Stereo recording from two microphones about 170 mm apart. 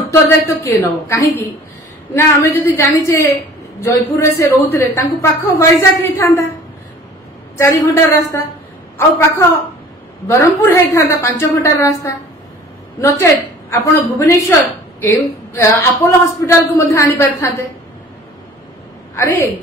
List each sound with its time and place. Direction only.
0.8 s speech: 15° left (ahead or behind)
7.5 s speech: 15° left (ahead or behind)
19.1 s speech: 15° left (ahead or behind)